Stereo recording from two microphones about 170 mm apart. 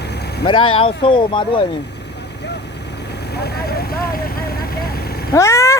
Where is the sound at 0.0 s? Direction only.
75° left (ahead or behind).